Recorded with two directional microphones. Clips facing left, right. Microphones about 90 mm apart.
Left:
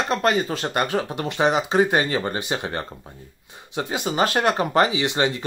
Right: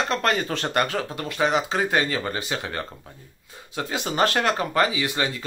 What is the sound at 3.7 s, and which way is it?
Speech, 10° left (ahead or behind).